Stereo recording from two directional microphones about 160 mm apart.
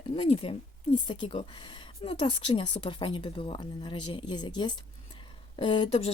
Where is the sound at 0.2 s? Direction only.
35° left (ahead or behind).